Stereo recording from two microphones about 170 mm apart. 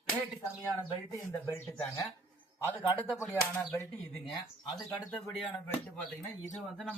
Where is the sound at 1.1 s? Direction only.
15° left (ahead or behind).